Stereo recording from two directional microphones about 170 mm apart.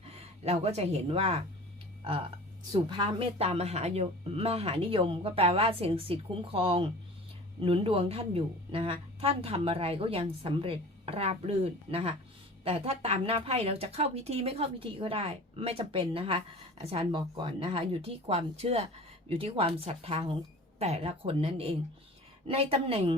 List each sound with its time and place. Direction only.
0.0 s speech: 35° right (ahead or behind)
2.9 s a woman's voice: 35° right (ahead or behind)